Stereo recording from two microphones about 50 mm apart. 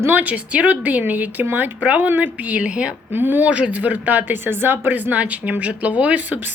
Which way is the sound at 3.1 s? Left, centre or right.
Right.